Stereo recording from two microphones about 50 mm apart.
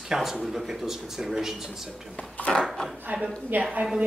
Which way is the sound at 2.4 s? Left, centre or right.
Left.